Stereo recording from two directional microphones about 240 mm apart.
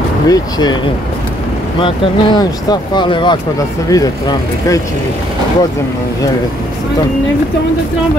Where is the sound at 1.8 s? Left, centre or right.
Left.